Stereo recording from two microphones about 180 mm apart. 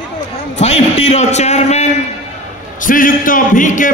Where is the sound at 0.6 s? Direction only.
40° left (ahead or behind).